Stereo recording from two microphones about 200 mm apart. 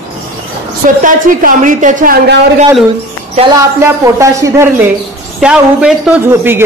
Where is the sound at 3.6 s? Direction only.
15° right (ahead or behind).